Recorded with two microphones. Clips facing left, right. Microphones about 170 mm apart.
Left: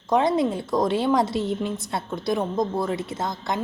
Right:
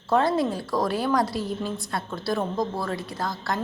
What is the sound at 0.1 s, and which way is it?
A woman's voice, 20° left (ahead or behind).